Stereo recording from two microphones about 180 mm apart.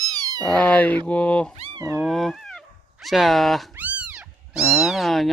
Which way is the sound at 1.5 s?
35° right (ahead or behind).